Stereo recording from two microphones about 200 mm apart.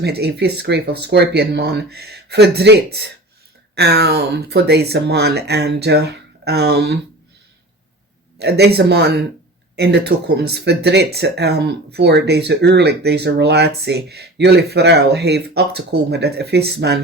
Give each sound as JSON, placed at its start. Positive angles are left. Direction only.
{"t": 0.0, "sound": "speech", "side_deg": -55}
{"t": 8.4, "sound": "speech", "side_deg": -55}